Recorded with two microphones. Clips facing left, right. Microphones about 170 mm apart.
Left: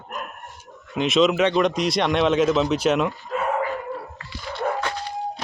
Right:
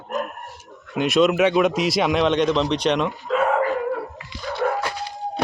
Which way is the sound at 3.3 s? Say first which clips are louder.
Right 6 dB; 90° right.